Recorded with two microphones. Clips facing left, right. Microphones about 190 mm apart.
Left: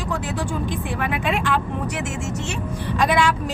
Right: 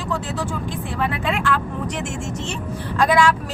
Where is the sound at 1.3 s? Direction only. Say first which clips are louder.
Left 1 dB; 20° left (ahead or behind).